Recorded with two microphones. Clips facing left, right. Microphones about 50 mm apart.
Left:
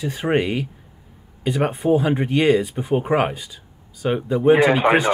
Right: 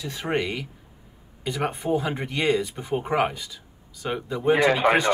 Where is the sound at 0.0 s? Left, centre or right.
Left.